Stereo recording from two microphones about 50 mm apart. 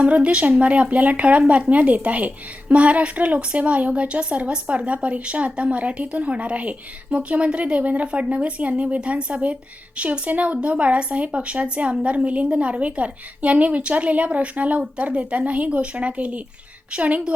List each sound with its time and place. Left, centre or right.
0.0 s speech: right